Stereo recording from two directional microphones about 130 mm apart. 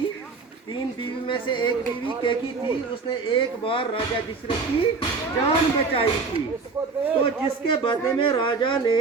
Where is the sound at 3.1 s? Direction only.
40° left (ahead or behind).